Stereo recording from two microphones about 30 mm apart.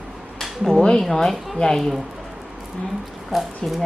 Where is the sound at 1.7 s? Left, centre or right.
Centre.